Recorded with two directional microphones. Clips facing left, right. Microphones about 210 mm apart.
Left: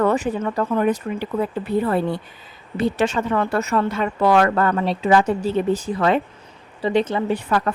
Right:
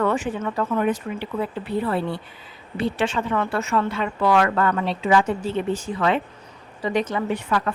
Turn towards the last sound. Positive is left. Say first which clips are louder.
# left 3 dB
turn(degrees=35)  # may be behind; listen again after turning